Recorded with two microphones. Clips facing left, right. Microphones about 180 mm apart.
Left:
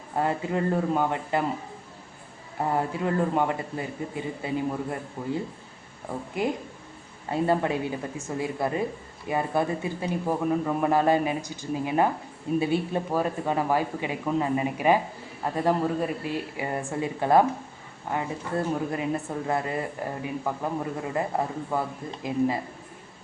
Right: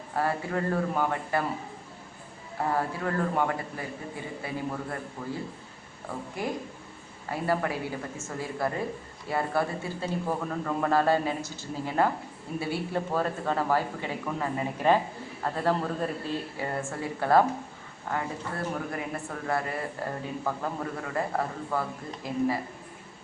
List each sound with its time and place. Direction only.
0.2 s speech: 20° left (ahead or behind)
2.7 s speech: 20° left (ahead or behind)
7.3 s speech: 25° left (ahead or behind)